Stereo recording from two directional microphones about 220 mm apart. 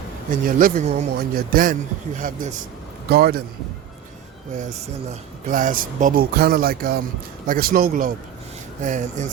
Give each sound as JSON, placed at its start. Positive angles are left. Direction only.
{"t": 0.3, "sound": "speech", "side_deg": -40}
{"t": 3.1, "sound": "speech", "side_deg": -45}
{"t": 5.5, "sound": "speech", "side_deg": -35}